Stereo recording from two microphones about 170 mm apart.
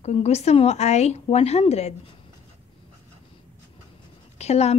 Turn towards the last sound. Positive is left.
turn(degrees=40)  # may be behind; listen again after turning